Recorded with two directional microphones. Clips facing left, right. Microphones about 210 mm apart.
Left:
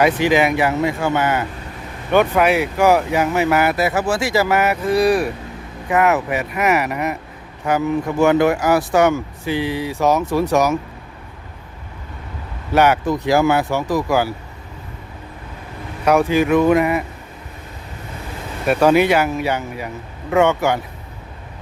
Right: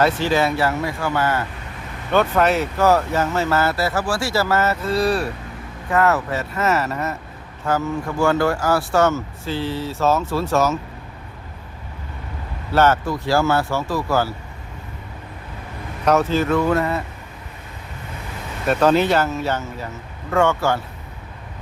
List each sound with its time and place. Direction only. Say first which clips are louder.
0.0 s speech: left 3 dB; 15° left (ahead or behind)
12.7 s speech: left 2 dB; 15° left (ahead or behind)
16.0 s speech: left 3 dB; 15° left (ahead or behind)
18.6 s speech: left 3 dB; 10° left (ahead or behind)